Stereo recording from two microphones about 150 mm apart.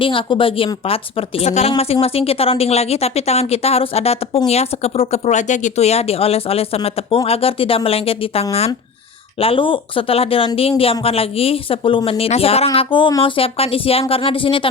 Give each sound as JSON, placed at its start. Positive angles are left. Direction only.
{"t": 0.0, "sound": "speech", "side_deg": 35}